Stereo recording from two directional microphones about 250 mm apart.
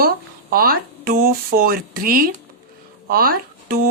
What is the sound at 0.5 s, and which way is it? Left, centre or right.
Speech, right.